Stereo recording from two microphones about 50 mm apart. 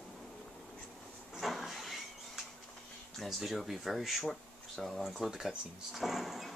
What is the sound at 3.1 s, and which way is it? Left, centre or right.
Speech, centre.